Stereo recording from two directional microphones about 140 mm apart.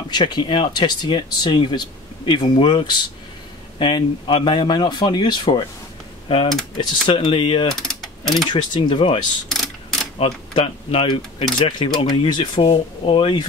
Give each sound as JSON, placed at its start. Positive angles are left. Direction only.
{"t": 0.1, "sound": "speech", "side_deg": 35}
{"t": 7.8, "sound": "mechanisms", "side_deg": 0}
{"t": 8.5, "sound": "speech", "side_deg": 35}